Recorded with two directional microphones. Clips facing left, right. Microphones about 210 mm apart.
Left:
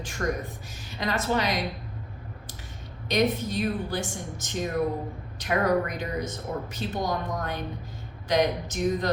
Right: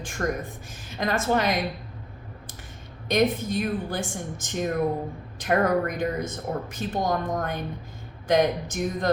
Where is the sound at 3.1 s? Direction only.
50° right (ahead or behind).